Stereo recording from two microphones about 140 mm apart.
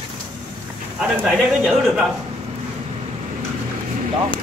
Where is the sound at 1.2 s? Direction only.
5° right (ahead or behind).